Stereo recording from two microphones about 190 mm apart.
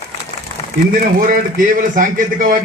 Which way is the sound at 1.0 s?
45° right (ahead or behind).